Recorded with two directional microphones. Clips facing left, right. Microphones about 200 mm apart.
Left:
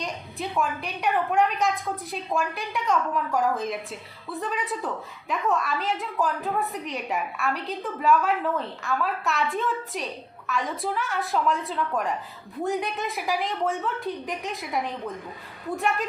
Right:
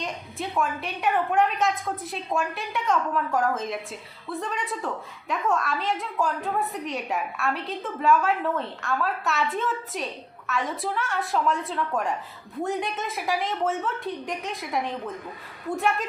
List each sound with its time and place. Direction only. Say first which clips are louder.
0.0 s a woman's voice: even; centre (ahead or behind)